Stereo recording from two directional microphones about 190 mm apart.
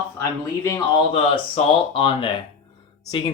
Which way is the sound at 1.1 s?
30° left (ahead or behind).